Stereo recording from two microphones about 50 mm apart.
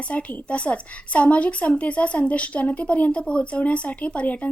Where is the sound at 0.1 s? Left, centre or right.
Left.